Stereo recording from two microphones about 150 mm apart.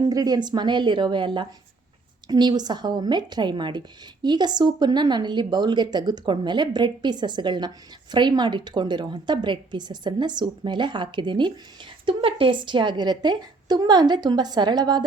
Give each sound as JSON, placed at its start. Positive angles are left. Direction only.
{"t": 0.0, "sound": "a woman's voice", "side_deg": -25}